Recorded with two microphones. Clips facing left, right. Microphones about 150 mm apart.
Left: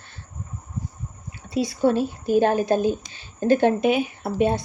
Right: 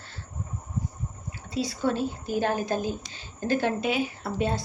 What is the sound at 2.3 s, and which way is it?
A woman's voice, 20° left (ahead or behind).